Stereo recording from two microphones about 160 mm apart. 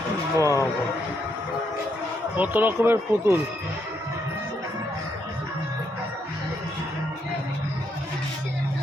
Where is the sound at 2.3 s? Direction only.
10° right (ahead or behind).